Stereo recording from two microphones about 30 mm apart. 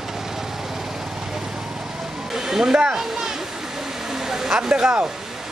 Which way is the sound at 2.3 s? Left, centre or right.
Centre.